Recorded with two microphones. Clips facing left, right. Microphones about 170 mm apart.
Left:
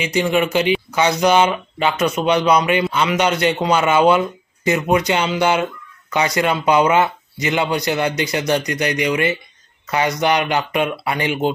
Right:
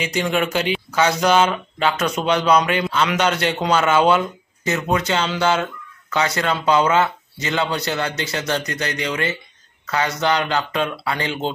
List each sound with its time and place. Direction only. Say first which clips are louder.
0.0 s a man's voice: left 3 dB; 10° left (ahead or behind)